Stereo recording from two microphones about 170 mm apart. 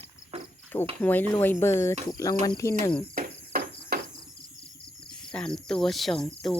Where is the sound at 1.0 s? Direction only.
10° left (ahead or behind).